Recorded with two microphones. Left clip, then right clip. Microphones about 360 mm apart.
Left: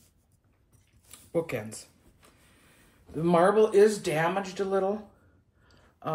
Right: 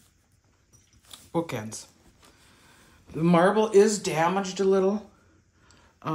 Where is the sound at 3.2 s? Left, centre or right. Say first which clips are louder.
Even; right.